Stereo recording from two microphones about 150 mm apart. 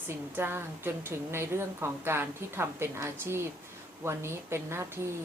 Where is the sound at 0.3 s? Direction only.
15° right (ahead or behind).